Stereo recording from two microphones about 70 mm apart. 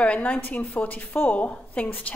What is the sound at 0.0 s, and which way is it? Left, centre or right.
A woman's voice, left.